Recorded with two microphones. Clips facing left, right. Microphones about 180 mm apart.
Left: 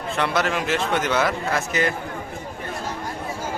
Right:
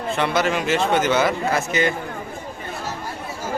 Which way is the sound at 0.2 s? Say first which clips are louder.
Right 1 dB; centre (ahead or behind).